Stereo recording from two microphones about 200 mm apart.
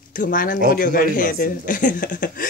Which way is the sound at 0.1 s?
40° left (ahead or behind).